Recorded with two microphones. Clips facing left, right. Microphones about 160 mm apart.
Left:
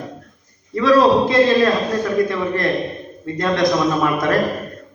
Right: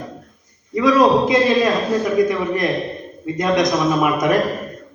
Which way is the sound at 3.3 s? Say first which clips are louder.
Even; 20° right (ahead or behind).